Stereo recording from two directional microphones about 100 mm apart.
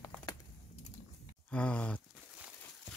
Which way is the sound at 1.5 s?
10° left (ahead or behind).